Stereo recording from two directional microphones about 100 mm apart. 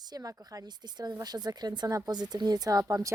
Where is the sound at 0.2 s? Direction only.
35° right (ahead or behind).